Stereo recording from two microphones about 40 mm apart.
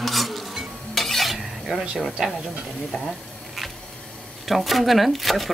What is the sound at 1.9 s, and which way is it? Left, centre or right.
Speech, centre.